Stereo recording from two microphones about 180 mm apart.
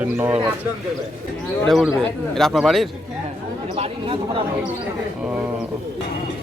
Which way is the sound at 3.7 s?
30° right (ahead or behind).